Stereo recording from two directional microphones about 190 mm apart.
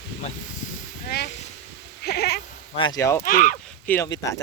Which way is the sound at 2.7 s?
25° left (ahead or behind).